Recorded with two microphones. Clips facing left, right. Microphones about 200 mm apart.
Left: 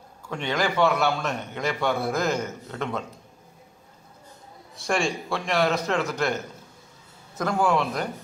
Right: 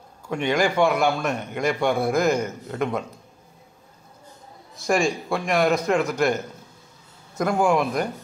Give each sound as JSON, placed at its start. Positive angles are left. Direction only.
{"t": 0.3, "sound": "a man's voice", "side_deg": -10}
{"t": 5.3, "sound": "a man's voice", "side_deg": -10}